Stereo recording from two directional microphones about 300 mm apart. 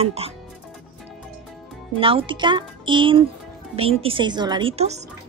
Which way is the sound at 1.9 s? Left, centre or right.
Centre.